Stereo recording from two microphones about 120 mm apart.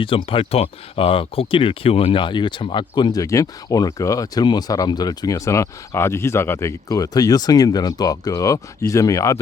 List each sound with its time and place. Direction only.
0.0 s speech: 45° left (ahead or behind); by 9.4 s 25° left (ahead or behind)